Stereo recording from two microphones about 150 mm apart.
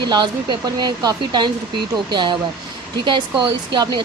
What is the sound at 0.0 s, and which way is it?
Speech, 30° right (ahead or behind).